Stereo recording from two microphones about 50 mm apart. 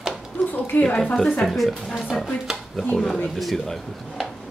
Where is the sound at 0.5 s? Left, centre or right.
Left.